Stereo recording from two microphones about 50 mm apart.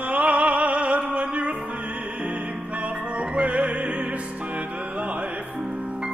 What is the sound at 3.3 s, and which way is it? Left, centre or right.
Music, right.